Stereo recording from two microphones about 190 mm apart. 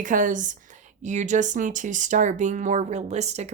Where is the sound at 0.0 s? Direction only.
45° right (ahead or behind).